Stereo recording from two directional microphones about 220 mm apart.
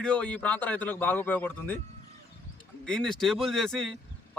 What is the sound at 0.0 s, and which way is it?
A man's voice, 5° left (ahead or behind).